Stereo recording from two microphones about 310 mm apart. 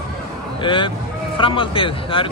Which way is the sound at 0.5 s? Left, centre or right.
Centre.